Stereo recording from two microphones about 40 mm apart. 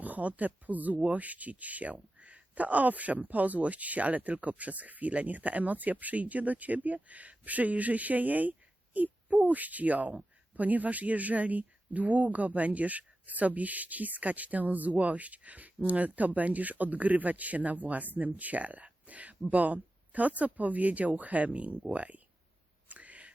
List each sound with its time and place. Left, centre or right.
0.0 s a woman's voice: right
22.9 s whispering: right